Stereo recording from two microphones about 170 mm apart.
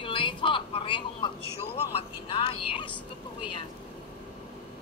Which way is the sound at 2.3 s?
30° left (ahead or behind).